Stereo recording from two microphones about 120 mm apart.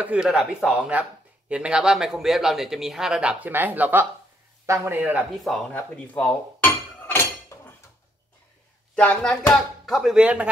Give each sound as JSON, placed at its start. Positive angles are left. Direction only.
{"t": 0.0, "sound": "a man's voice", "side_deg": -10}
{"t": 5.4, "sound": "a man's voice", "side_deg": 5}
{"t": 5.9, "sound": "dishes", "side_deg": 10}
{"t": 8.9, "sound": "a man's voice", "side_deg": 10}